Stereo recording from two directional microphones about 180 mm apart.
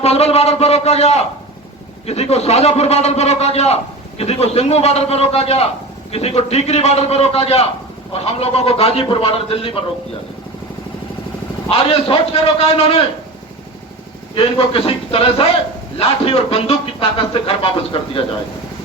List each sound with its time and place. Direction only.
0.0 s speech: 35° left (ahead or behind)
11.7 s speech: 30° left (ahead or behind)
14.3 s speech: 30° left (ahead or behind)